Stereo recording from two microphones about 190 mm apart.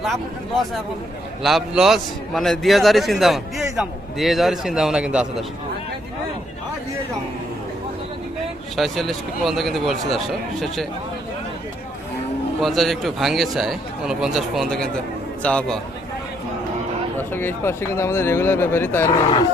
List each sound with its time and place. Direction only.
0.0 s a man's voice: centre (ahead or behind)
8.7 s a man's voice: centre (ahead or behind)
12.5 s a man's voice: centre (ahead or behind)
17.2 s speech: 10° left (ahead or behind)